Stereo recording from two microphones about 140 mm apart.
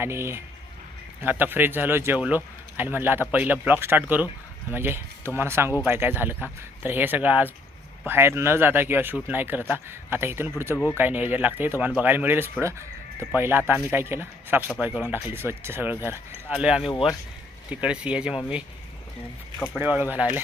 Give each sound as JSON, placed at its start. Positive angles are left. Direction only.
{"t": 0.0, "sound": "speech", "side_deg": -20}
{"t": 19.8, "sound": "speech", "side_deg": -10}